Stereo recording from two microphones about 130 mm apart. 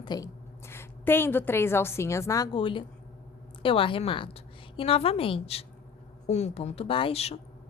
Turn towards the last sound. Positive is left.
turn(degrees=50)  # may be behind; listen again after turning